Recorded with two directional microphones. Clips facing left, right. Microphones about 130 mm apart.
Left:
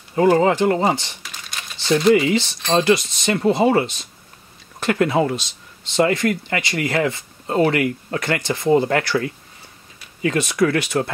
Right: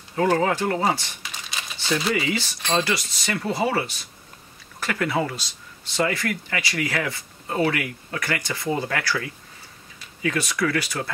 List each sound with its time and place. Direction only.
0.1 s speech: 20° left (ahead or behind)
1.5 s crumpling: centre (ahead or behind)
2.1 s speech: 20° left (ahead or behind)
10.2 s speech: 25° left (ahead or behind)